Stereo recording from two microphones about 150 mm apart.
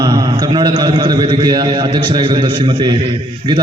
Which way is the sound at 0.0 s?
25° right (ahead or behind).